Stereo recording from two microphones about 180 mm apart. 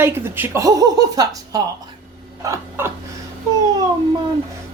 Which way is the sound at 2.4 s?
15° right (ahead or behind).